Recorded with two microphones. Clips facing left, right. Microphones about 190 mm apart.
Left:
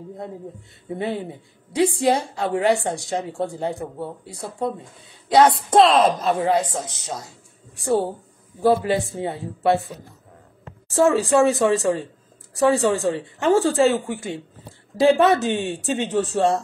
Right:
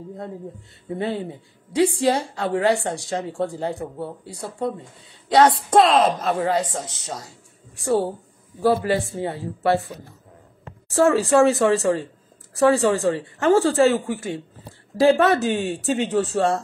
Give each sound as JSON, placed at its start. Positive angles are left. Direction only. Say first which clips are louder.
{"t": 0.8, "sound": "a woman's voice", "louder": "even", "side_deg": 20}
{"t": 5.3, "sound": "a woman's voice", "louder": "left 1 dB", "side_deg": 20}
{"t": 5.8, "sound": "a woman's voice", "louder": "left 1 dB", "side_deg": 30}
{"t": 6.5, "sound": "a woman's voice", "louder": "left 2 dB", "side_deg": 20}
{"t": 11.0, "sound": "a woman's voice", "louder": "right 1 dB", "side_deg": 15}